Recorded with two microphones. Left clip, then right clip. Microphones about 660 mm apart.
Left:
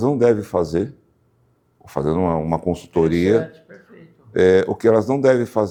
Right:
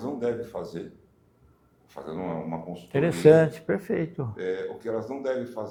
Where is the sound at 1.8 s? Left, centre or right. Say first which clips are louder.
Left 14 dB; left.